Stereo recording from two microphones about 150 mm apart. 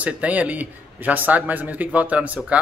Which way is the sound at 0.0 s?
10° right (ahead or behind).